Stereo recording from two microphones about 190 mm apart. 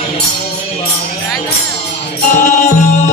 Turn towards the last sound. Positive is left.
turn(degrees=40)  # may be behind; listen again after turning